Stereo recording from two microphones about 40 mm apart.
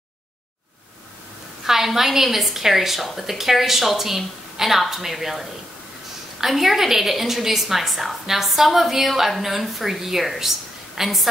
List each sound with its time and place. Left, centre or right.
1.6 s a woman's voice: centre
6.4 s a woman's voice: centre